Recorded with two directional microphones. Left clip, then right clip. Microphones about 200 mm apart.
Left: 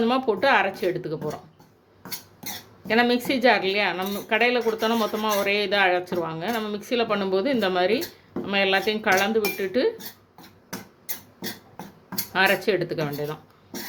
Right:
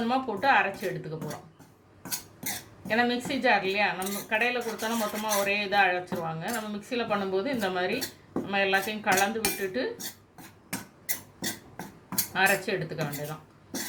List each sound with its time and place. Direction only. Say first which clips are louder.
0.0 s speech: left 5 dB; 50° left (ahead or behind)
2.8 s speech: left 6 dB; 50° left (ahead or behind)
12.3 s speech: left 5 dB; 50° left (ahead or behind)